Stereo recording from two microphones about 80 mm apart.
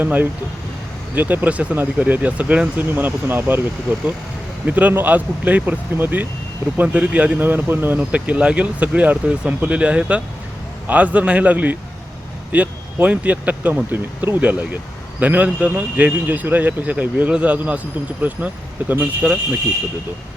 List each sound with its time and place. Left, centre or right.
0.0 s speech: right
4.6 s speech: centre